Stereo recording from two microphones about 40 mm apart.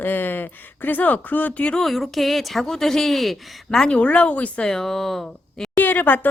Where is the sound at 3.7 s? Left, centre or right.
Centre.